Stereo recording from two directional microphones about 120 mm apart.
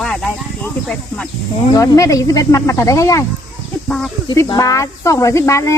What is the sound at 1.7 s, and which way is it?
Speech, 25° left (ahead or behind).